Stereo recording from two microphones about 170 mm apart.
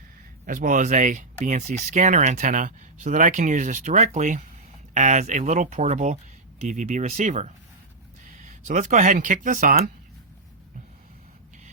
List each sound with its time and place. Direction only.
0.4 s speech: 50° right (ahead or behind)